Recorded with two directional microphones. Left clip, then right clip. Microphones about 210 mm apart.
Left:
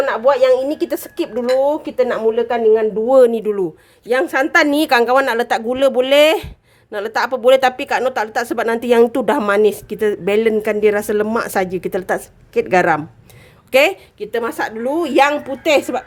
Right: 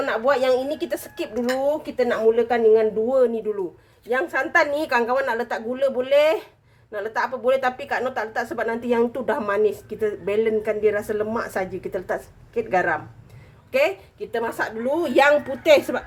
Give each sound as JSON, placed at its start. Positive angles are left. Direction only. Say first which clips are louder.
{"t": 0.0, "sound": "a woman's voice", "louder": "left 7 dB", "side_deg": 45}